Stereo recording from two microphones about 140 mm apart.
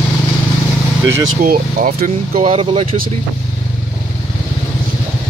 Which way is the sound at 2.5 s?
50° right (ahead or behind).